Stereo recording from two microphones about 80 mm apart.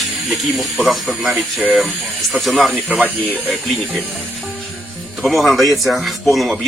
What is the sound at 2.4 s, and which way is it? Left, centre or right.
Speech, centre.